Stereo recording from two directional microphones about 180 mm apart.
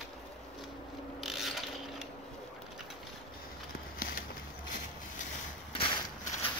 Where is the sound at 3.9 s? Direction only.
55° left (ahead or behind).